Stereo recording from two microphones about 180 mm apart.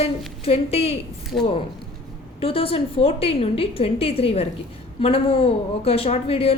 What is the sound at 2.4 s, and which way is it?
A woman's voice, 30° left (ahead or behind).